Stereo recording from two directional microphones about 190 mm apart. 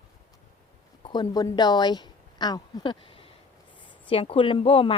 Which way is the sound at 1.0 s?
20° left (ahead or behind).